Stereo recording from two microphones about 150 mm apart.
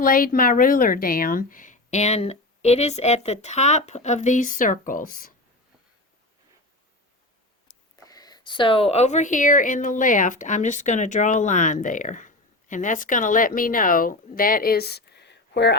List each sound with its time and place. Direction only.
0.0 s speech: 70° left (ahead or behind)
8.0 s speech: 25° left (ahead or behind); by 15.2 s 90° left